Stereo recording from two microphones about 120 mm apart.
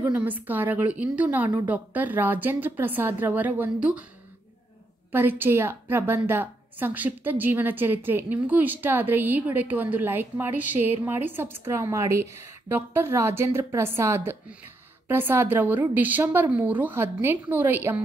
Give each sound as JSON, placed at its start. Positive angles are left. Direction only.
{"t": 0.2, "sound": "a woman's voice", "side_deg": -15}
{"t": 5.1, "sound": "a woman's voice", "side_deg": -15}